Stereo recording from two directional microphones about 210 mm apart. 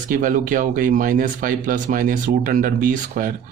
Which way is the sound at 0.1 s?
40° right (ahead or behind).